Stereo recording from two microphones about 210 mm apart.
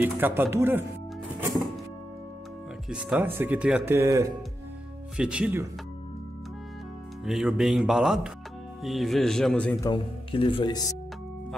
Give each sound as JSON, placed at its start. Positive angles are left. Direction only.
{"t": 0.0, "sound": "speech", "side_deg": -10}
{"t": 2.9, "sound": "speech", "side_deg": -5}
{"t": 7.2, "sound": "speech", "side_deg": 0}
{"t": 9.8, "sound": "speech", "side_deg": 25}